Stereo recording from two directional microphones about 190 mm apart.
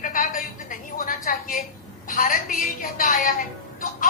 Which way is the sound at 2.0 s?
45° left (ahead or behind).